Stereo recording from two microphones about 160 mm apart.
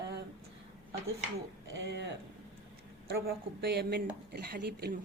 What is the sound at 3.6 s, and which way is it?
Speech, 85° right.